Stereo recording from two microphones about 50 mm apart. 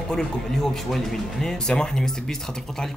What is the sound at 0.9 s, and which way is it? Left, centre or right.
Speech, centre.